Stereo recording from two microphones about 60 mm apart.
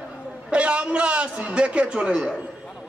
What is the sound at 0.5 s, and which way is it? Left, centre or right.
A man's voice, centre.